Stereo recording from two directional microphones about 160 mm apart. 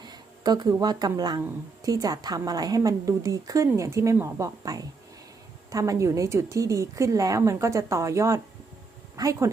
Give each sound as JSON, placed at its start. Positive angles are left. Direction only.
{"t": 0.0, "sound": "a woman's voice", "side_deg": -25}